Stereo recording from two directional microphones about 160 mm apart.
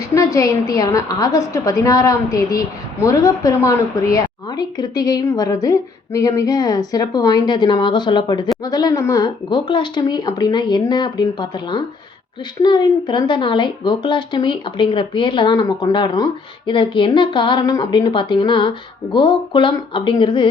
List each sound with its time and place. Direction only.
0.1 s a woman's voice: 20° left (ahead or behind)